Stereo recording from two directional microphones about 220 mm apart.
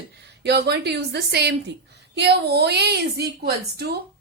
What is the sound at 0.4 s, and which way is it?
Speech, 50° right (ahead or behind).